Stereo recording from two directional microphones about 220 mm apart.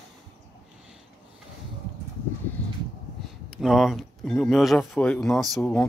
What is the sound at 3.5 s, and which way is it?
Speech, centre (ahead or behind).